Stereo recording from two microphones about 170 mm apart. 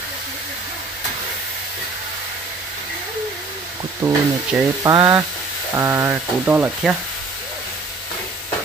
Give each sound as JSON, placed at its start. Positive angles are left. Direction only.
{"t": 4.0, "sound": "speech", "side_deg": -15}
{"t": 4.5, "sound": "speech", "side_deg": 0}
{"t": 4.8, "sound": "speech", "side_deg": -20}